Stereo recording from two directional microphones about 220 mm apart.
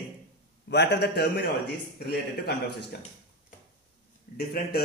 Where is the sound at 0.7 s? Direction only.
50° left (ahead or behind).